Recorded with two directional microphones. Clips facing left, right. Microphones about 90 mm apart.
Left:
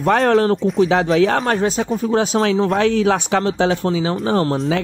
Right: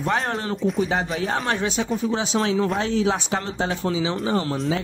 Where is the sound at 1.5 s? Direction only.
40° left (ahead or behind).